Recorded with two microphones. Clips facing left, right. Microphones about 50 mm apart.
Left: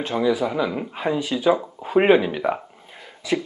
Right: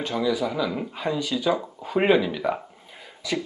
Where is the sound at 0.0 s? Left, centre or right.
Left.